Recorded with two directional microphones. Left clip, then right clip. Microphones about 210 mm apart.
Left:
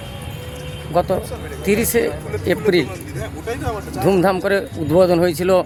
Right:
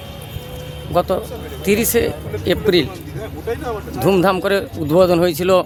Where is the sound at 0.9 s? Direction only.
Centre (ahead or behind).